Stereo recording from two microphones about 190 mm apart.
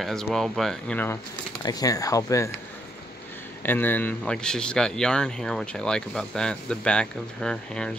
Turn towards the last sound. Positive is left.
turn(degrees=5)  # may be behind; listen again after turning